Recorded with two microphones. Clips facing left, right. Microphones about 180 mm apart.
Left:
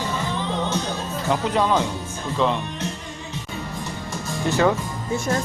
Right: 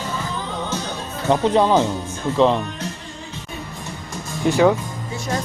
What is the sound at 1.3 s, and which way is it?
Speech, 30° right (ahead or behind).